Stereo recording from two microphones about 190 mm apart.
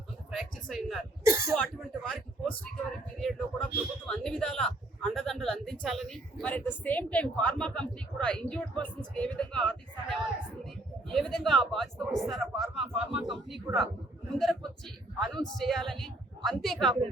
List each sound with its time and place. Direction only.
0.3 s speech: centre (ahead or behind)
13.7 s a man's voice: 15° right (ahead or behind)
14.3 s speech: centre (ahead or behind)